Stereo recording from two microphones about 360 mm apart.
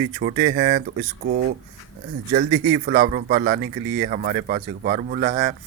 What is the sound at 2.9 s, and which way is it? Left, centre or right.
Speech, right.